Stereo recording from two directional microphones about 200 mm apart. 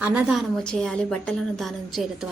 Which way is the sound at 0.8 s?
5° left (ahead or behind).